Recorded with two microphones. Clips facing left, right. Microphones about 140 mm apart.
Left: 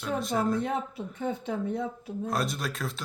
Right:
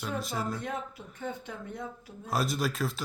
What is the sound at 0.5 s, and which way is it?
Speech, 25° left (ahead or behind).